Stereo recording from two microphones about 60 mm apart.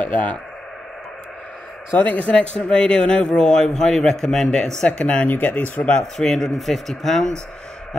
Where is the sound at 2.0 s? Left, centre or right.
Left.